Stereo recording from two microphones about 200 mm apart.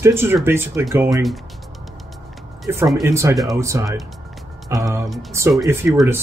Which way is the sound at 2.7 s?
10° right (ahead or behind).